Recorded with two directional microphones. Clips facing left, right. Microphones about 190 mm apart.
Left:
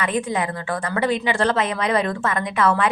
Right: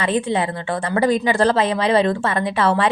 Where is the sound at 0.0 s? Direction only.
30° right (ahead or behind).